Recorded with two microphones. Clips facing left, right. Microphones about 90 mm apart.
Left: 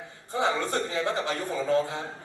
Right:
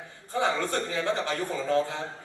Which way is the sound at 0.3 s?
20° left (ahead or behind).